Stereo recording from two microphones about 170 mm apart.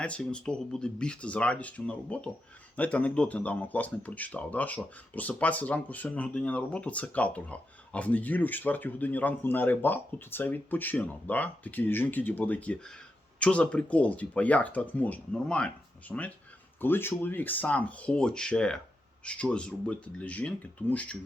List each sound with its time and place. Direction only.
0.0 s speech: 5° left (ahead or behind)